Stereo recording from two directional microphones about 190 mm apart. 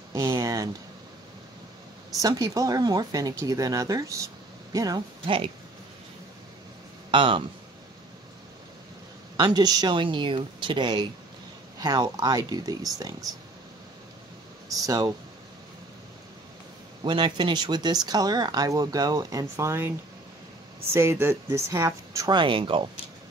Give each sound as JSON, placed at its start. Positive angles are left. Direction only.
{"t": 0.1, "sound": "a sound", "side_deg": -15}
{"t": 2.1, "sound": "speech", "side_deg": -20}
{"t": 7.1, "sound": "speech", "side_deg": -25}
{"t": 9.4, "sound": "speech", "side_deg": -20}
{"t": 14.7, "sound": "speech", "side_deg": -20}
{"t": 17.0, "sound": "speech", "side_deg": -25}
{"t": 20.9, "sound": "speech", "side_deg": -15}